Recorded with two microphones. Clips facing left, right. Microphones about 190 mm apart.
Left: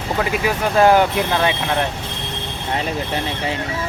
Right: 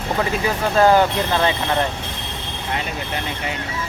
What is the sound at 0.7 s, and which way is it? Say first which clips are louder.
Speech: left 1 dB; 10° left (ahead or behind).